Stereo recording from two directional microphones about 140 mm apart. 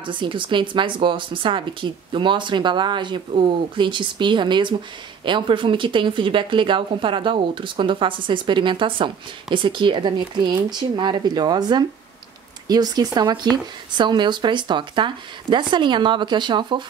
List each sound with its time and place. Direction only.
0.0 s speech: 35° right (ahead or behind)